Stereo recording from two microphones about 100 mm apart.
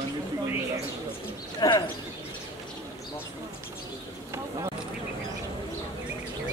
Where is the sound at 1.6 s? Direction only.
40° left (ahead or behind).